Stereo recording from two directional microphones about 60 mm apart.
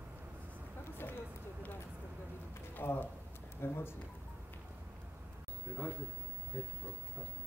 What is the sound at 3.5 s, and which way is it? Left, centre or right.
Speech, left.